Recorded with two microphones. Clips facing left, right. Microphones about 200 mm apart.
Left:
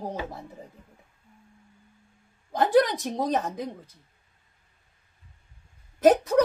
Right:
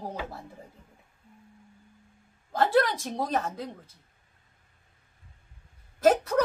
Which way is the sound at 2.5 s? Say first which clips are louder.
Left 3 dB; 15° left (ahead or behind).